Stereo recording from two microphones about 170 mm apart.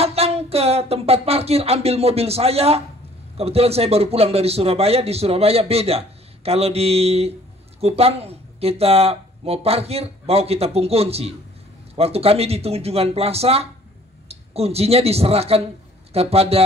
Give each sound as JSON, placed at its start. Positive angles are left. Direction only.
{"t": 0.0, "sound": "a man's voice", "side_deg": -35}